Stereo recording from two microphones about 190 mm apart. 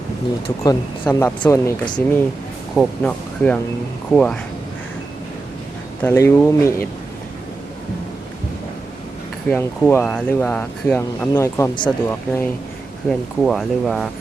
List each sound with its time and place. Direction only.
0.4 s speech: 20° left (ahead or behind)
2.7 s speech: 5° left (ahead or behind)
6.0 s speech: 15° left (ahead or behind)
9.5 s speech: 10° left (ahead or behind)
13.1 s speech: centre (ahead or behind)